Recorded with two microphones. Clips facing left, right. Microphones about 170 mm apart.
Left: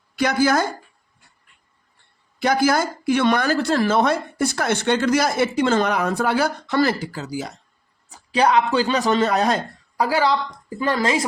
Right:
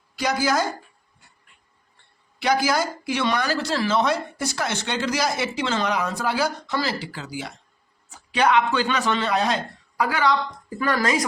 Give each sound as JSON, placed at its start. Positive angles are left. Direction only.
{"t": 0.2, "sound": "speech", "side_deg": 55}
{"t": 2.4, "sound": "speech", "side_deg": 50}
{"t": 10.0, "sound": "a woman's voice", "side_deg": 35}